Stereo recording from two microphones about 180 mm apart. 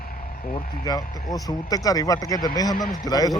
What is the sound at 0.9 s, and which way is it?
A man's voice, 20° left (ahead or behind).